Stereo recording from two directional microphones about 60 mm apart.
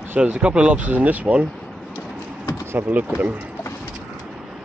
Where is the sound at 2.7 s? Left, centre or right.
Right.